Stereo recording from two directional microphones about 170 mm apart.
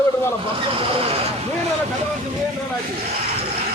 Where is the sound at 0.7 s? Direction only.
35° right (ahead or behind).